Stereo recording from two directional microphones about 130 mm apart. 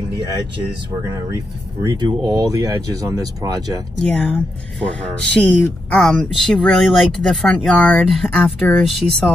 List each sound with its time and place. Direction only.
1.9 s speech: 30° right (ahead or behind)
4.0 s speech: 10° left (ahead or behind)